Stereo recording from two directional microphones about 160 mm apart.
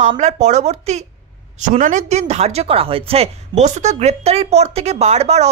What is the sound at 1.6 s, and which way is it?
A woman's voice, 55° right (ahead or behind).